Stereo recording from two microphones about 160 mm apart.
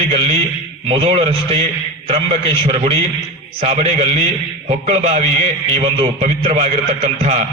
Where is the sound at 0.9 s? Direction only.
35° right (ahead or behind).